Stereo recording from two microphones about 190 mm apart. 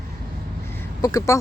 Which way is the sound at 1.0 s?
15° left (ahead or behind).